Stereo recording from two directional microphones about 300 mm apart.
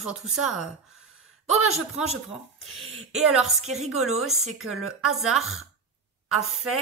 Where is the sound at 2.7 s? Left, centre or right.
Right.